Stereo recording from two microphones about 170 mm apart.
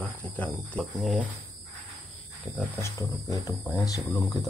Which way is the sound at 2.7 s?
20° left (ahead or behind).